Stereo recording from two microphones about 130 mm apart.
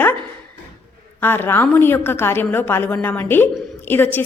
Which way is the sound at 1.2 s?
15° left (ahead or behind).